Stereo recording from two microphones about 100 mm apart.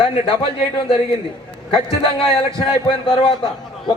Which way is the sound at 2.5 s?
60° left (ahead or behind).